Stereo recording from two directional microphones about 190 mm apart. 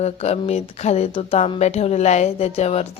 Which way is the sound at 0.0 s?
35° left (ahead or behind).